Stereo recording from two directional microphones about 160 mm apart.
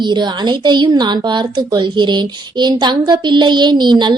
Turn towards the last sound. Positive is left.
turn(degrees=-30)  # may be behind; listen again after turning